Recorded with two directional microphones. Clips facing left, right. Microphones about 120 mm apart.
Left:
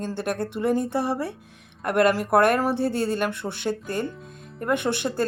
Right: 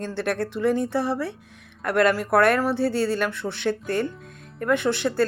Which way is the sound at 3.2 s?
15° left (ahead or behind).